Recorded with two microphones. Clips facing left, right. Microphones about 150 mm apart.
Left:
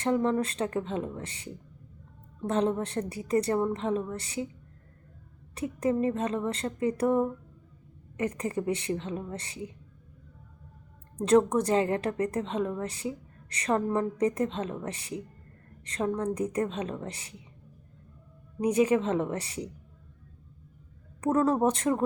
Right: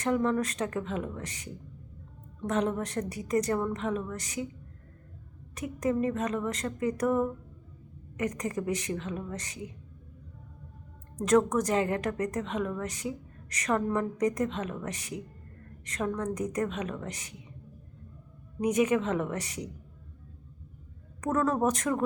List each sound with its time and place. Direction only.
0.0 s a woman's voice: 30° left (ahead or behind)
5.5 s a woman's voice: 30° left (ahead or behind)
11.2 s a woman's voice: 30° left (ahead or behind)
18.6 s a woman's voice: 30° left (ahead or behind)
21.2 s a woman's voice: 30° left (ahead or behind)